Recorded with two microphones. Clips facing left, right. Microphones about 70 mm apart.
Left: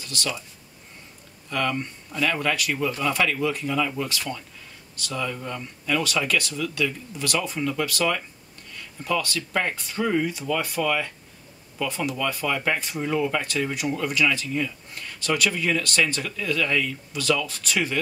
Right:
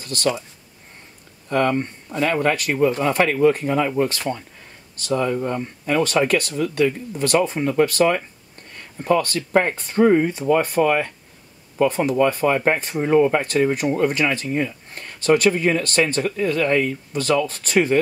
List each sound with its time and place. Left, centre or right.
0.0 s speech: right
1.5 s speech: right